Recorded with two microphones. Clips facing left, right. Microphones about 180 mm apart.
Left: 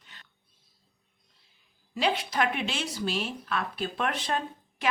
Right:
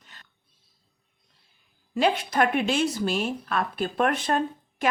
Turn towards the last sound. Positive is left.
turn(degrees=-50)  # may be behind; listen again after turning